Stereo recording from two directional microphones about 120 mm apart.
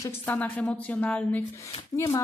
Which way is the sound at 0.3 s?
10° left (ahead or behind).